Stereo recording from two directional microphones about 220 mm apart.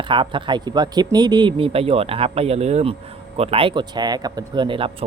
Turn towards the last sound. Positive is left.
turn(degrees=-25)  # may be behind; listen again after turning